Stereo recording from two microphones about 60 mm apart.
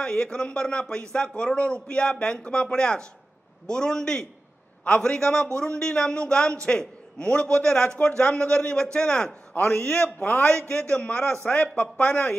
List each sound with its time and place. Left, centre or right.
0.0 s a man's voice: centre
9.5 s a man's voice: left
10.7 s a man's voice: centre